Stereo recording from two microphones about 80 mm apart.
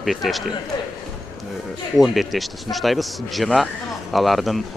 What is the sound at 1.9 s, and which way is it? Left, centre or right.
Speech, centre.